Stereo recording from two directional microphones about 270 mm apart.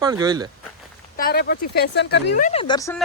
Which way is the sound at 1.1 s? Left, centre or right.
Left.